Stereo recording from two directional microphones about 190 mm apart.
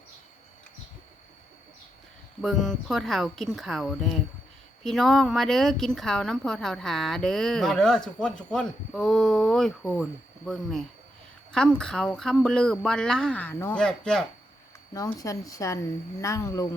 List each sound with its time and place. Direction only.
2.4 s speech: centre (ahead or behind)
14.9 s speech: 20° left (ahead or behind)